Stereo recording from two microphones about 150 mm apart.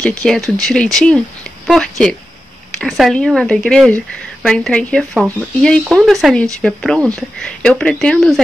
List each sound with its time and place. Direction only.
0.2 s speech: 5° left (ahead or behind)